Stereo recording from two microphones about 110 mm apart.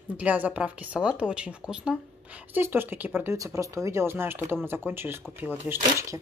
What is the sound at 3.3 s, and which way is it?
Speech, 25° right (ahead or behind).